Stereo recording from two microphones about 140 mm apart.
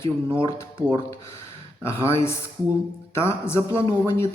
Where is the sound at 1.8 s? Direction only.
20° left (ahead or behind).